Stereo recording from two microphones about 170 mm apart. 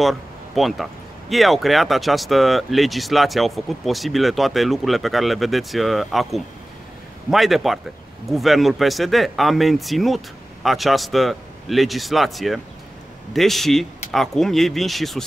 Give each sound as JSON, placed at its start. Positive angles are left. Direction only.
{"t": 0.0, "sound": "speech", "side_deg": 0}